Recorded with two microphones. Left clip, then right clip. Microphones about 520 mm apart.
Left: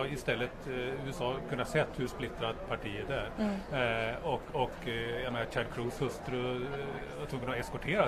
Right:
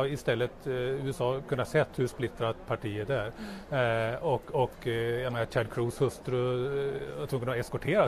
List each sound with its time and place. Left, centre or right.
0.0 s speech: right